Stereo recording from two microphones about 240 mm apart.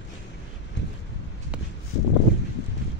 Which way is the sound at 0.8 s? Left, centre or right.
Left.